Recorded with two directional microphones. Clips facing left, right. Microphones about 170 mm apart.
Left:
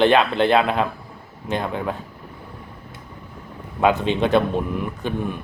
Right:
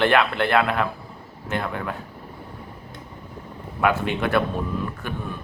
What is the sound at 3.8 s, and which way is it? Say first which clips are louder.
Speech: left 4 dB; 20° left (ahead or behind).